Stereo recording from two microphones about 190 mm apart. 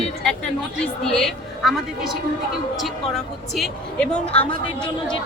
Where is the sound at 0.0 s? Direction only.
5° left (ahead or behind).